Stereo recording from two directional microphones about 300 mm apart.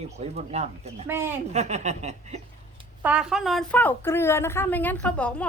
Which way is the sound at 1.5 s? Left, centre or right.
Right.